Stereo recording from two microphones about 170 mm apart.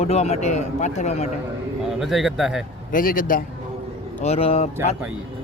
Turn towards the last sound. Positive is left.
turn(degrees=35)  # may be behind; listen again after turning